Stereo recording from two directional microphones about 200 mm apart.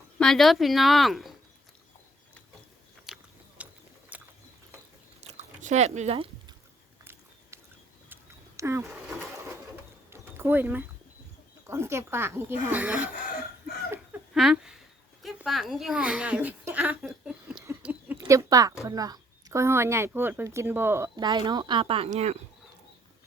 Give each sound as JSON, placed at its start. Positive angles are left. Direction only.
{"t": 0.2, "sound": "speech", "side_deg": 0}
{"t": 3.1, "sound": "biting", "side_deg": 0}
{"t": 3.6, "sound": "mechanisms", "side_deg": -5}
{"t": 4.1, "sound": "a sound", "side_deg": -5}
{"t": 5.2, "sound": "chewing", "side_deg": -35}
{"t": 7.0, "sound": "biting", "side_deg": -10}
{"t": 8.1, "sound": "a sound", "side_deg": -15}
{"t": 11.6, "sound": "speech", "side_deg": -15}
{"t": 13.9, "sound": "a sound", "side_deg": -5}
{"t": 15.2, "sound": "a woman's voice", "side_deg": 0}
{"t": 17.7, "sound": "a sound", "side_deg": -10}
{"t": 18.9, "sound": "speech", "side_deg": -20}